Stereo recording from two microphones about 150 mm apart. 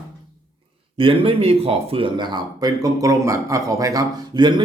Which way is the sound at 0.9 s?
35° right (ahead or behind).